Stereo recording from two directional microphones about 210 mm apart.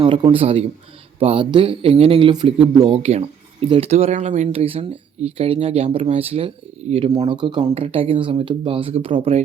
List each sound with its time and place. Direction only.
0.0 s a man's voice: 25° right (ahead or behind)